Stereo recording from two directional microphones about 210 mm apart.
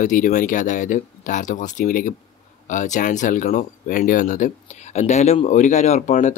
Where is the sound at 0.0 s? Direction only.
40° left (ahead or behind).